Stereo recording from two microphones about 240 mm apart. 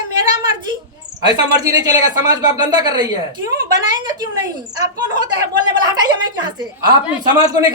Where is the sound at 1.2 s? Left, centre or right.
Centre.